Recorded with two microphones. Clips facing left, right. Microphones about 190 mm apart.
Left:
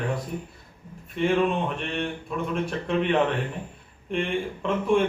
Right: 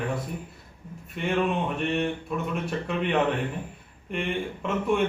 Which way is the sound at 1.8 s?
5° right (ahead or behind).